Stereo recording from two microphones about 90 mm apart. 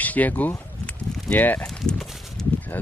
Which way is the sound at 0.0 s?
15° left (ahead or behind).